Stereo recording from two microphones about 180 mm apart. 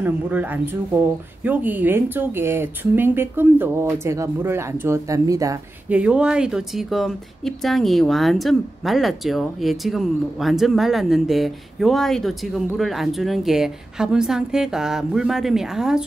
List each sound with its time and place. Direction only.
0.0 s speech: 10° right (ahead or behind)
5.9 s speech: 5° right (ahead or behind)